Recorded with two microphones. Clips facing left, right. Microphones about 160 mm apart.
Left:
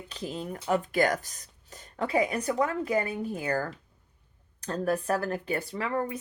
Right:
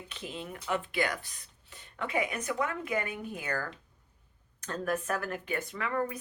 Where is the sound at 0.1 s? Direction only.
35° left (ahead or behind).